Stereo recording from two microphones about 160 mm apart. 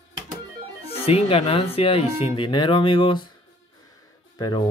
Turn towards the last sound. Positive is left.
turn(degrees=25)  # may be behind; listen again after turning